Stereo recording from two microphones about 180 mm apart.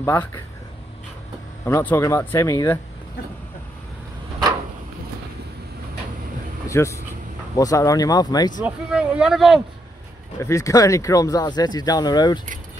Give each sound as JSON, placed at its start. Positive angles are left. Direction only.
{"t": 0.0, "sound": "speech", "side_deg": 15}
{"t": 1.7, "sound": "speech", "side_deg": 15}
{"t": 6.7, "sound": "speech", "side_deg": 15}
{"t": 8.6, "sound": "speech", "side_deg": -5}
{"t": 10.4, "sound": "speech", "side_deg": 15}